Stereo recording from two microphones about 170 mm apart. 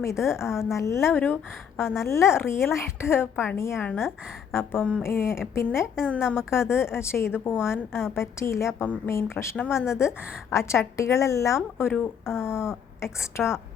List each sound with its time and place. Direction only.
0.0 s a woman's voice: 15° left (ahead or behind)